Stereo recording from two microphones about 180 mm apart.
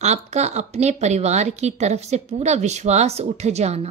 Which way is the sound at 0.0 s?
40° right (ahead or behind).